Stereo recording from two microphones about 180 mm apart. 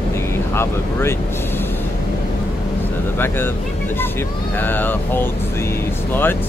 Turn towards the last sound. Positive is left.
turn(degrees=10)  # may be behind; listen again after turning